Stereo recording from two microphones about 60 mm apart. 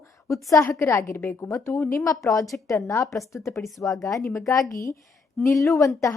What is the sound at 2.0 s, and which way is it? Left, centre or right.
A woman's voice, left.